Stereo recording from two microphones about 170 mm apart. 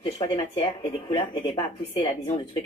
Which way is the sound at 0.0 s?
30° left (ahead or behind).